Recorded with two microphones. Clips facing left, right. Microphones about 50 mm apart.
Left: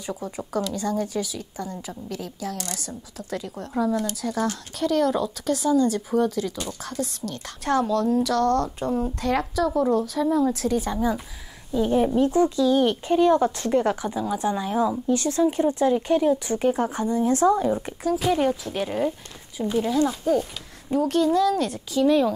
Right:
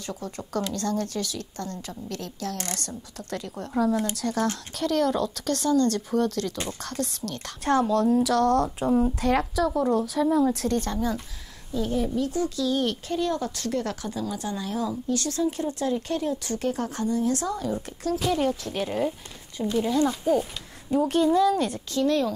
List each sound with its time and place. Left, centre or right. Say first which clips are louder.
0.0 s a woman's voice: left 3 dB; centre
11.7 s a woman's voice: left 6 dB; left; by 22.3 s centre